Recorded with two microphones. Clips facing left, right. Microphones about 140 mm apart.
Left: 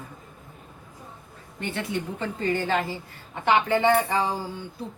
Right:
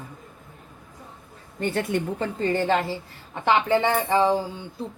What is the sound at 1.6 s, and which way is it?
Speech, 45° right (ahead or behind).